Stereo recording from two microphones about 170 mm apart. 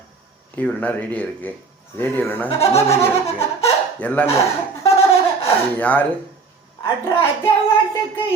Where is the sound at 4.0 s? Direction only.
10° left (ahead or behind).